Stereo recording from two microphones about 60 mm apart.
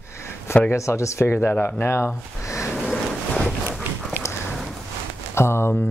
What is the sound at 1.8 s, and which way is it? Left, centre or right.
Speech, left.